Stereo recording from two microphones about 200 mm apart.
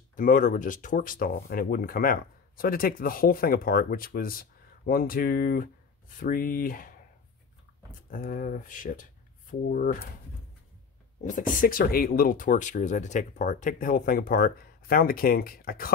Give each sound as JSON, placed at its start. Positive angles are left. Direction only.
{"t": 0.1, "sound": "speech", "side_deg": 40}
{"t": 8.1, "sound": "speech", "side_deg": 40}
{"t": 11.2, "sound": "speech", "side_deg": 45}